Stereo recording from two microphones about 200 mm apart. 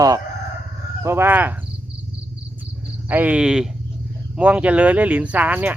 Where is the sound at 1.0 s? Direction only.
10° right (ahead or behind).